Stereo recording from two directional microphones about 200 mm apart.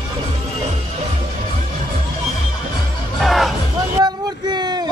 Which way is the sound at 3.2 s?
Centre (ahead or behind).